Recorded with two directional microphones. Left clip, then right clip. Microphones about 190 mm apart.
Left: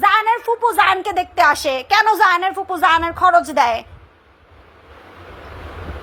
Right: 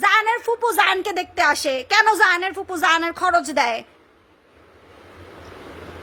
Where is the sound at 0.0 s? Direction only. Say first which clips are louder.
Left 3 dB; 15° right (ahead or behind).